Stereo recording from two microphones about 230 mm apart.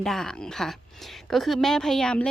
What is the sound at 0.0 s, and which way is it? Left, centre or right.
A woman's voice, centre.